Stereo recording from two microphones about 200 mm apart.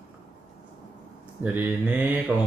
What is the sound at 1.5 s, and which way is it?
Speech, 10° right (ahead or behind).